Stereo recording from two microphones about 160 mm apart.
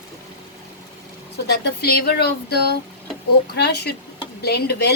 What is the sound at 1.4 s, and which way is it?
Speech, 90° left.